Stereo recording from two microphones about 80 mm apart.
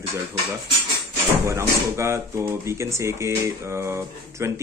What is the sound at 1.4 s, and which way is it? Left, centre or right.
Speech, right.